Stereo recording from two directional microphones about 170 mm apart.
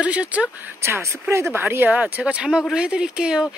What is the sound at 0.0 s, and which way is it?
Speech, 5° right (ahead or behind).